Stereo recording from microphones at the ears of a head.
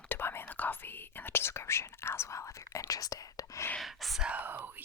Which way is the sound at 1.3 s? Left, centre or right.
Left.